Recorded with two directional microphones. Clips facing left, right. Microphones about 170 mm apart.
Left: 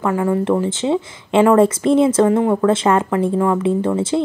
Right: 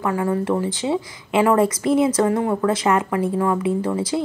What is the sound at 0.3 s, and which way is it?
Speech, 25° left (ahead or behind).